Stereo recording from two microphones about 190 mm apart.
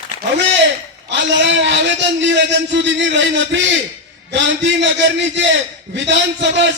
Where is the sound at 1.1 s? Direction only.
70° right (ahead or behind).